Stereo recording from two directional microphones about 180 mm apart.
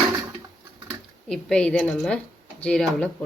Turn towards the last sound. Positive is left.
turn(degrees=5)  # may be behind; listen again after turning